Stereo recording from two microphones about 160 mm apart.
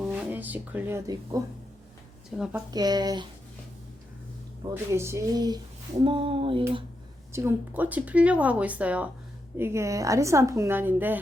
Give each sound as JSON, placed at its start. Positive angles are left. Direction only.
{"t": 0.0, "sound": "speech", "side_deg": -10}
{"t": 2.3, "sound": "a woman's voice", "side_deg": -5}
{"t": 2.7, "sound": "a woman's voice", "side_deg": -25}
{"t": 4.7, "sound": "speech", "side_deg": -15}
{"t": 7.3, "sound": "a woman's voice", "side_deg": -15}